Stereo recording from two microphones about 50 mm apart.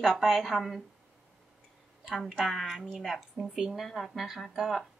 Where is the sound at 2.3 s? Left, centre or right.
Centre.